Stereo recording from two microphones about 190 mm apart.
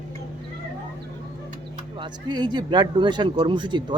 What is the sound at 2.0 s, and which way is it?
Speech, 25° right (ahead or behind).